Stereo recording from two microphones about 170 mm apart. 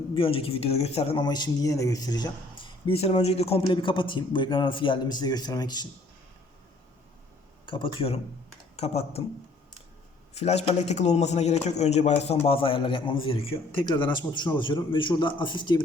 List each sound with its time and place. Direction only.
0.1 s speech: 30° left (ahead or behind)
7.6 s speech: 30° left (ahead or behind)
10.3 s a man's voice: 40° left (ahead or behind)